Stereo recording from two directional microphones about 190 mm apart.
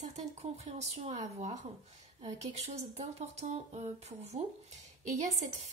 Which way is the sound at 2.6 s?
35° right (ahead or behind).